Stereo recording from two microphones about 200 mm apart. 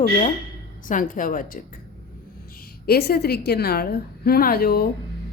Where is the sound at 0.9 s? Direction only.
40° left (ahead or behind).